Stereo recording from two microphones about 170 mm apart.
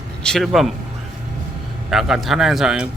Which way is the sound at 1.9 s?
Centre (ahead or behind).